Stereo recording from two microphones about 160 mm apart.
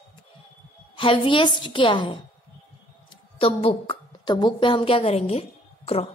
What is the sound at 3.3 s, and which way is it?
A woman's voice, 35° left (ahead or behind).